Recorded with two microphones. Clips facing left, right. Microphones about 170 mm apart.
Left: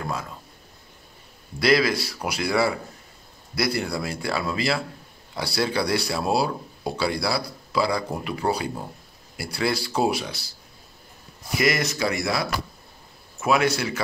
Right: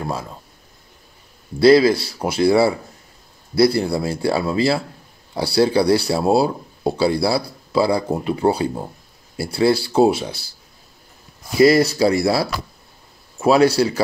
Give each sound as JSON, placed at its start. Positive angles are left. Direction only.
{"t": 0.0, "sound": "speech", "side_deg": -30}
{"t": 1.6, "sound": "speech", "side_deg": -30}
{"t": 11.5, "sound": "speech", "side_deg": -30}